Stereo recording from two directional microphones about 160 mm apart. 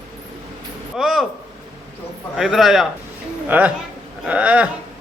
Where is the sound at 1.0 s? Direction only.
5° right (ahead or behind).